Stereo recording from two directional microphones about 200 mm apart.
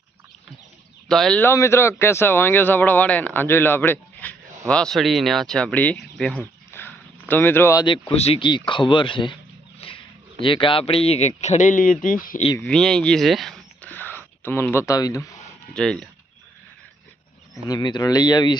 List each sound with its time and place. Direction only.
1.0 s speech: centre (ahead or behind); by 12.4 s 45° left (ahead or behind)
12.5 s speech: 5° left (ahead or behind)
15.7 s speech: 5° left (ahead or behind)
17.7 s speech: 20° left (ahead or behind)